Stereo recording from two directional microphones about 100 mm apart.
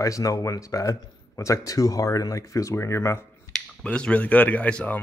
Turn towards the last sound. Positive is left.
turn(degrees=15)  # may be behind; listen again after turning